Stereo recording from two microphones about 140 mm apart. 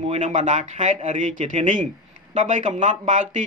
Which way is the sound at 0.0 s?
55° right (ahead or behind).